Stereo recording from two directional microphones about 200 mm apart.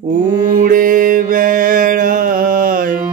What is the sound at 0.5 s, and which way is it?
Music, 40° right (ahead or behind).